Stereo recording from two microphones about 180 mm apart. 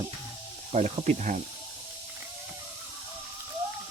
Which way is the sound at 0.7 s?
40° right (ahead or behind).